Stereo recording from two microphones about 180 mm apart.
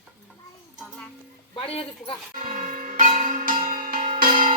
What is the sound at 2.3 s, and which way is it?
Church bell, 50° right (ahead or behind).